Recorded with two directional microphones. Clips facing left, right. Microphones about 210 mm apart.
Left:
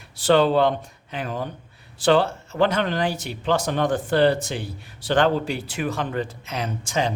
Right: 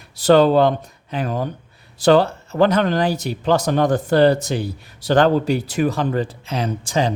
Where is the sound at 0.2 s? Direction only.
40° right (ahead or behind).